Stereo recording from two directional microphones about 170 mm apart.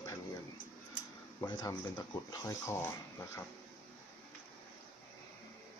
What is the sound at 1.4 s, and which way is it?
Speech, 25° left (ahead or behind).